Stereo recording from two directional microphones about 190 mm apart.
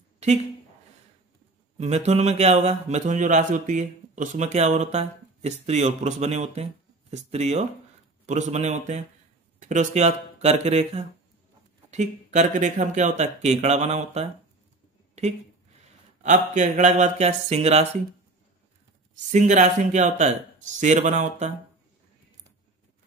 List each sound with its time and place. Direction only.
1.8 s speech: 35° right (ahead or behind)
16.2 s speech: 40° right (ahead or behind)
19.3 s speech: 40° right (ahead or behind)